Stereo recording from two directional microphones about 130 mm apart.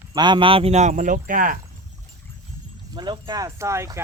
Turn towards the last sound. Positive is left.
turn(degrees=-20)  # may be behind; listen again after turning